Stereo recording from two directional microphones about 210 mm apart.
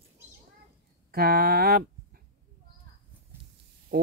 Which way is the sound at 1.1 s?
45° right (ahead or behind).